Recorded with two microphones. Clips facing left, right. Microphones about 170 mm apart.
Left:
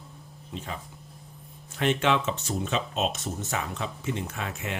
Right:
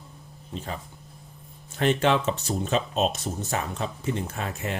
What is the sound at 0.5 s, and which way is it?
Speech, 35° right (ahead or behind).